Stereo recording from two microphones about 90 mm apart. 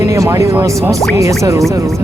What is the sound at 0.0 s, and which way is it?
Speech, 35° right (ahead or behind).